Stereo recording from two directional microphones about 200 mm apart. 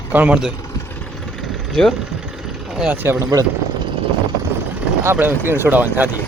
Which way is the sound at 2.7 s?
5° right (ahead or behind).